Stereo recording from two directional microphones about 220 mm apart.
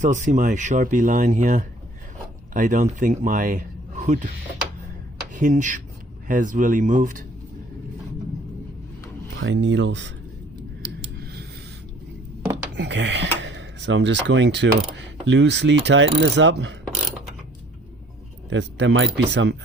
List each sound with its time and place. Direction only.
0.0 s speech: 35° right (ahead or behind)
5.3 s speech: 35° right (ahead or behind)
9.4 s speech: 55° right (ahead or behind)
10.8 s a sound: 50° right (ahead or behind)
12.7 s speech: 50° right (ahead or behind)
14.9 s mechanisms: 55° right (ahead or behind)
18.5 s mechanisms: 55° right (ahead or behind)